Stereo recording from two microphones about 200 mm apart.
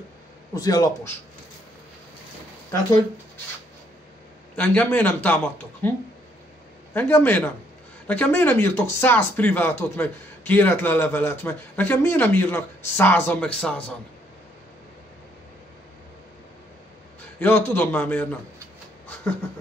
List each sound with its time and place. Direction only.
0.6 s speech: 20° left (ahead or behind)
4.6 s speech: 10° left (ahead or behind)
17.4 s speech: 10° left (ahead or behind)